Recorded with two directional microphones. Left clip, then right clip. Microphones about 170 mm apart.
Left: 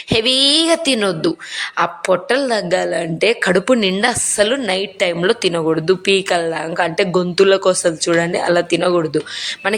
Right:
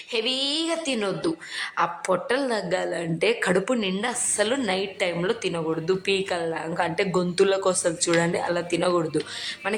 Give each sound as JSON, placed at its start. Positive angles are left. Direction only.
{"t": 0.1, "sound": "a woman's voice", "side_deg": 30}
{"t": 5.2, "sound": "a woman's voice", "side_deg": 30}